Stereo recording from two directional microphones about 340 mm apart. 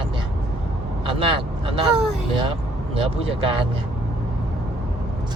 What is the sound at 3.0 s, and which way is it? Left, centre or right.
Speech, centre.